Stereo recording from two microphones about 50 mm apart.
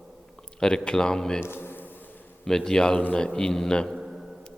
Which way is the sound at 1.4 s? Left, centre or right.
Left.